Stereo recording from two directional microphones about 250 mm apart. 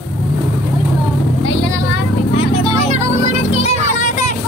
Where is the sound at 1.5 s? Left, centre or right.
Left.